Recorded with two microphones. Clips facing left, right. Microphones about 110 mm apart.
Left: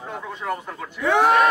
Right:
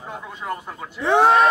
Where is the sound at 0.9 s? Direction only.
30° right (ahead or behind).